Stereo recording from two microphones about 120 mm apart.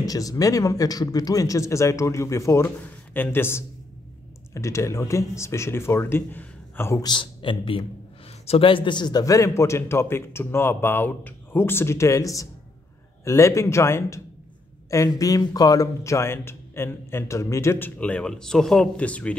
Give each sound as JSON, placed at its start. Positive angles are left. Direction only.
{"t": 0.0, "sound": "speech", "side_deg": 30}
{"t": 7.0, "sound": "a man's voice", "side_deg": 40}